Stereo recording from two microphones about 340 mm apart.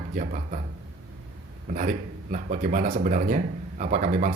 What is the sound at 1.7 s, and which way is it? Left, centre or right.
Speech, right.